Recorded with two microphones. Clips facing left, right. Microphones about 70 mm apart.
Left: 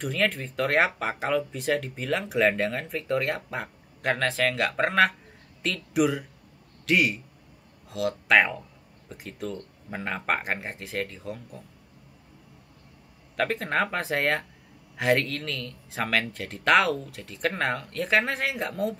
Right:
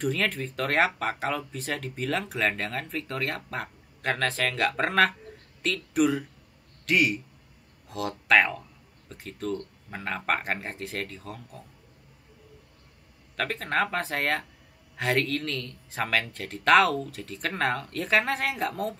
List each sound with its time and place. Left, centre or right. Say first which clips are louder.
0.0 s speech: left 1 dB; centre
13.4 s speech: left 1 dB; centre